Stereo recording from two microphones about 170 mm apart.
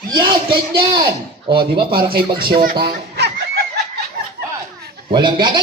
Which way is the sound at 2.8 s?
75° right (ahead or behind).